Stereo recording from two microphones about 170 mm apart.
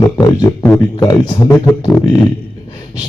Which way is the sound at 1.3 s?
25° left (ahead or behind).